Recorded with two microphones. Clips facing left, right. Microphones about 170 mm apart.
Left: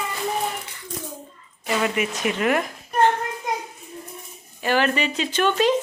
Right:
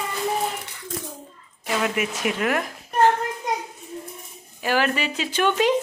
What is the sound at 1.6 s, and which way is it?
A woman's voice, centre (ahead or behind).